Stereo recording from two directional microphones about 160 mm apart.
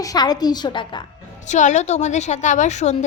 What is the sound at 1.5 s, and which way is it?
A woman's voice, 50° left (ahead or behind).